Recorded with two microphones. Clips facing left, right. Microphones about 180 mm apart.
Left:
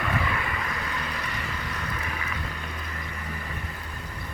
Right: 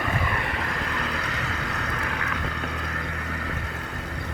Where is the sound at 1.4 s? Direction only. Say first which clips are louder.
Right 3 dB; 75° right (ahead or behind).